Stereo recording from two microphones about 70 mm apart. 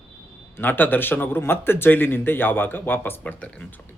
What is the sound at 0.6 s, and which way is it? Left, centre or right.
A man's voice, left.